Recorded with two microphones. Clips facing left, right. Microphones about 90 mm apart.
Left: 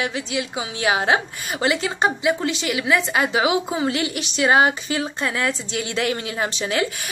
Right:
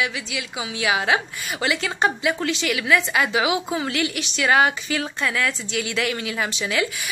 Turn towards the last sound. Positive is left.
turn(degrees=35)  # may be behind; listen again after turning